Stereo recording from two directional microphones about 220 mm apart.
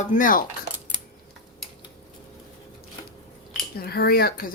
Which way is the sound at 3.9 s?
45° left (ahead or behind).